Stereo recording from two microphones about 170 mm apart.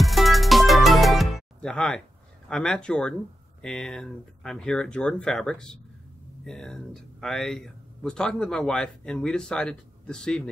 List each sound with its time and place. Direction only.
0.0 s music: centre (ahead or behind)
3.6 s speech: 5° left (ahead or behind)